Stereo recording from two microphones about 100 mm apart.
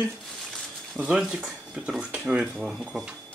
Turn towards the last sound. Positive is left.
turn(degrees=-5)  # may be behind; listen again after turning